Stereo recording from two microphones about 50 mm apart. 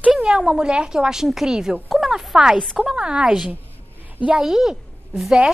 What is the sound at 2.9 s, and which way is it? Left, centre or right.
Speech, centre.